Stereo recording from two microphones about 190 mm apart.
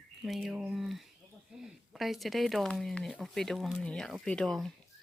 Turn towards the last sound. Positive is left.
turn(degrees=5)  # may be behind; listen again after turning